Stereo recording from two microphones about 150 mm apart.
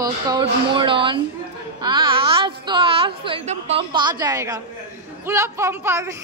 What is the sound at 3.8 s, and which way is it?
A woman's voice, 30° right (ahead or behind).